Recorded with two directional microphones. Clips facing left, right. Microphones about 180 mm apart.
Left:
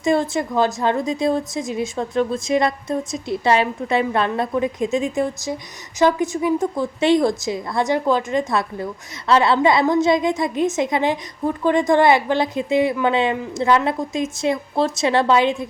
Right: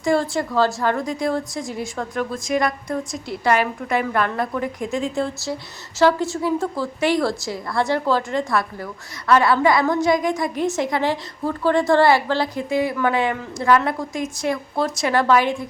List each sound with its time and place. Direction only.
0.0 s a woman's voice: 20° left (ahead or behind)